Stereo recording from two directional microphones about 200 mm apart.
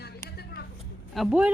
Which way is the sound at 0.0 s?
55° left (ahead or behind).